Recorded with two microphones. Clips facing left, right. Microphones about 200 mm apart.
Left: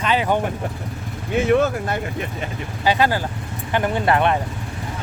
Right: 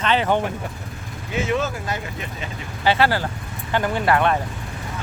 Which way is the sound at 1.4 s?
55° left (ahead or behind).